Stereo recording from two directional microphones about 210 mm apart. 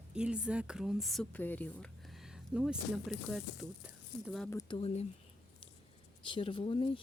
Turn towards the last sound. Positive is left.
turn(degrees=25)  # may be behind; listen again after turning